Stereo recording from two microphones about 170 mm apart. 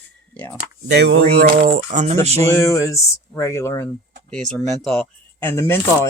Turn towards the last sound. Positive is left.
turn(degrees=15)  # may be behind; listen again after turning